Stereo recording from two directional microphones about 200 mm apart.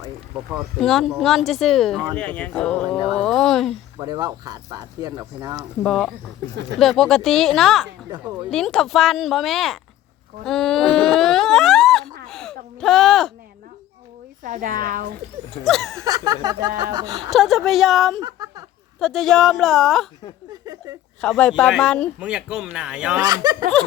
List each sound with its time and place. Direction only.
0.8 s speech: centre (ahead or behind)
3.9 s speech: 20° right (ahead or behind)
5.8 s speech: centre (ahead or behind)
12.3 s a sound: 5° left (ahead or behind)
14.4 s speech: 40° right (ahead or behind)
15.6 s speech: centre (ahead or behind)
16.0 s speech: 20° right (ahead or behind)
17.3 s speech: centre (ahead or behind)
18.2 s speech: 20° right (ahead or behind)
18.9 s speech: centre (ahead or behind)
20.5 s a sound: 20° right (ahead or behind)
21.2 s speech: 5° left (ahead or behind)
23.2 s speech: 20° right (ahead or behind)